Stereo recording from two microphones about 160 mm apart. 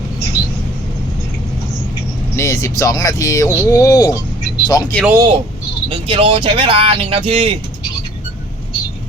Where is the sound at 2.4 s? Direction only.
20° left (ahead or behind).